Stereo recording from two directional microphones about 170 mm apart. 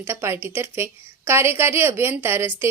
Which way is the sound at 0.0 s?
15° right (ahead or behind).